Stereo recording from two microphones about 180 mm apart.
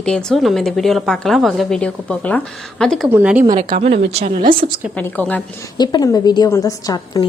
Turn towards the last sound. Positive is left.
turn(degrees=20)  # may be behind; listen again after turning